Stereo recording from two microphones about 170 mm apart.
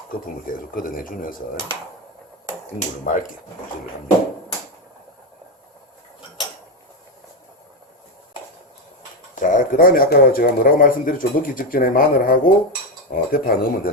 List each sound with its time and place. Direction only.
0.4 s a man's voice: 55° left (ahead or behind)
2.7 s speech: 50° left (ahead or behind)
9.3 s a man's voice: 50° left (ahead or behind)